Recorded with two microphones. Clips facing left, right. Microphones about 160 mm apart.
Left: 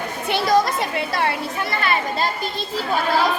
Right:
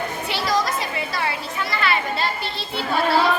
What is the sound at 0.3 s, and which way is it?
Speech, 55° left (ahead or behind).